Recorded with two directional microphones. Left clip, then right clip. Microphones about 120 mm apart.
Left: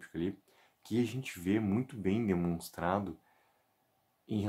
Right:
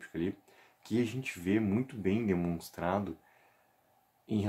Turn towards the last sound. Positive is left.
turn(degrees=25)  # may be behind; listen again after turning